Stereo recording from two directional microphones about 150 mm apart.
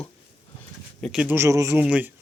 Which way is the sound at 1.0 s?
Centre (ahead or behind).